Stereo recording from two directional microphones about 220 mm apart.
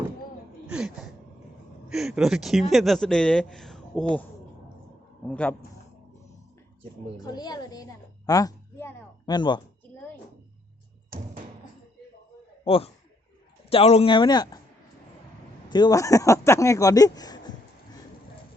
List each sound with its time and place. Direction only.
0.7 s speech: 5° right (ahead or behind)
5.3 s speech: 5° left (ahead or behind)
7.2 s a woman's voice: 20° left (ahead or behind)
12.6 s speech: 25° left (ahead or behind)
15.7 s speech: 15° left (ahead or behind)